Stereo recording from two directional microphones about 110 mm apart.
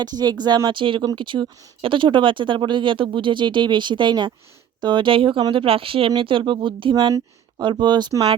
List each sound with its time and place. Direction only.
0.0 s speech: 40° right (ahead or behind)